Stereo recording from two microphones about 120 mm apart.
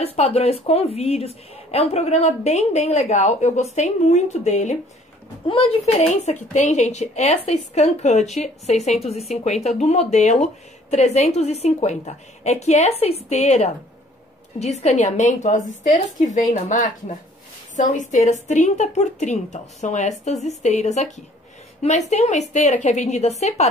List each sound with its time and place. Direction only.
0.0 s a woman's voice: 60° left (ahead or behind); by 4.7 s 75° left (ahead or behind)
5.5 s a woman's voice: 55° left (ahead or behind)
6.5 s a woman's voice: 75° left (ahead or behind)